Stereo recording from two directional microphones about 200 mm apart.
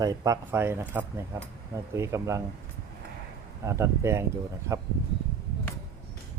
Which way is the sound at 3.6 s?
15° right (ahead or behind).